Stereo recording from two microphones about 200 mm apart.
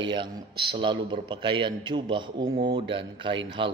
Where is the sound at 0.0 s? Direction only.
25° right (ahead or behind).